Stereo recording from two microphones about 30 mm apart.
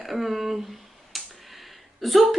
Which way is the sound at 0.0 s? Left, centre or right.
Centre.